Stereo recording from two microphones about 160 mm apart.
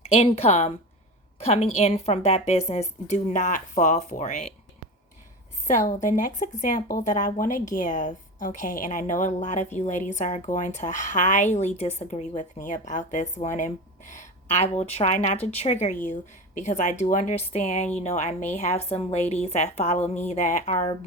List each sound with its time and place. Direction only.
0.1 s a woman's voice: 40° left (ahead or behind)
5.6 s speech: 50° left (ahead or behind)